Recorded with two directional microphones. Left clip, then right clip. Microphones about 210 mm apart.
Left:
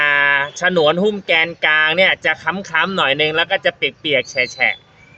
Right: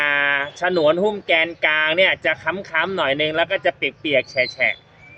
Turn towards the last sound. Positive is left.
turn(degrees=25)  # may be behind; listen again after turning